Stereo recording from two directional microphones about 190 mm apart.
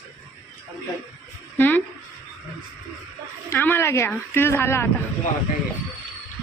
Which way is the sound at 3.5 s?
10° left (ahead or behind).